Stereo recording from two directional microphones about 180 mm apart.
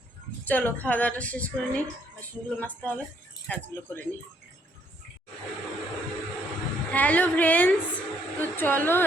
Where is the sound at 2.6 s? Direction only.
10° left (ahead or behind).